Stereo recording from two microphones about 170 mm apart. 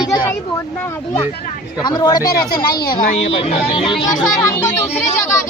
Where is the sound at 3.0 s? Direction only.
50° left (ahead or behind).